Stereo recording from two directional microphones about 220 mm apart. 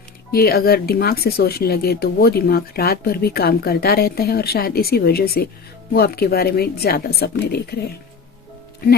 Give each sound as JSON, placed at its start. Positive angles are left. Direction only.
{"t": 0.3, "sound": "speech", "side_deg": 45}